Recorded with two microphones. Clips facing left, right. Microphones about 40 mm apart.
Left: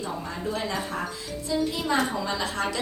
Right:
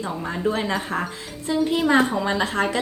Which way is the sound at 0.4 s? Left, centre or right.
Right.